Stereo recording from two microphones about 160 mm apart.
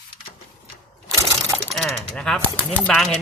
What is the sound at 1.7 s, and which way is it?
Mechanisms, centre (ahead or behind).